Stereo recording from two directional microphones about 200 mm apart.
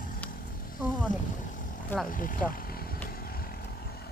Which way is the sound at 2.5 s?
45° left (ahead or behind).